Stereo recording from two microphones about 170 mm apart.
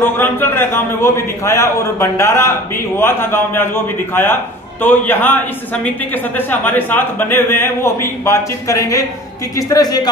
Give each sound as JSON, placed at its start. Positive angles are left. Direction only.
{"t": 0.0, "sound": "a man's voice", "side_deg": 10}